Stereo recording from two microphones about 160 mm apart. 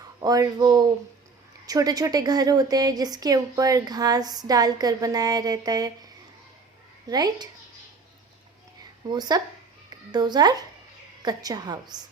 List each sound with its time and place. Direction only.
0.2 s a woman's voice: 20° right (ahead or behind)
7.1 s a woman's voice: 25° right (ahead or behind)
9.0 s a woman's voice: 25° right (ahead or behind)